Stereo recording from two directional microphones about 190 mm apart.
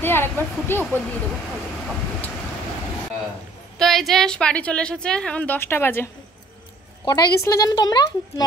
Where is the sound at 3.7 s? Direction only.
Centre (ahead or behind).